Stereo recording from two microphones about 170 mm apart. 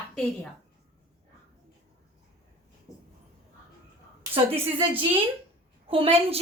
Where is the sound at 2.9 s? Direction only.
20° left (ahead or behind).